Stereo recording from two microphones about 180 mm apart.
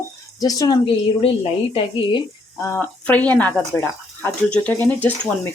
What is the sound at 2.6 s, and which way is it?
Speech, 10° left (ahead or behind).